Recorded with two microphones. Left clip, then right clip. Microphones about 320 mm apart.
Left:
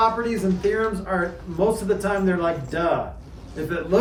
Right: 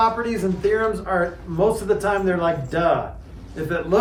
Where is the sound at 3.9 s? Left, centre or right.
Centre.